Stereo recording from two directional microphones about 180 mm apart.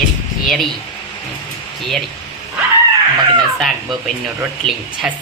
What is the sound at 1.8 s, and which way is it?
Speech, centre (ahead or behind).